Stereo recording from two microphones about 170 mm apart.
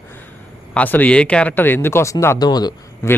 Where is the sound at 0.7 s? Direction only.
10° left (ahead or behind).